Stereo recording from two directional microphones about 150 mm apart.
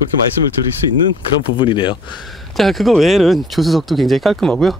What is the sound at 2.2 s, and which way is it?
Speech, centre (ahead or behind).